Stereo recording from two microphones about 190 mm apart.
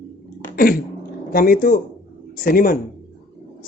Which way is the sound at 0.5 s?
50° left (ahead or behind).